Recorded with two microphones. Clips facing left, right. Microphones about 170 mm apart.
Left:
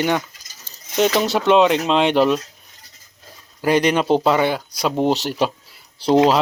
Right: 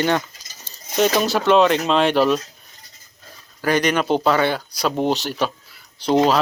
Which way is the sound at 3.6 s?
25° left (ahead or behind).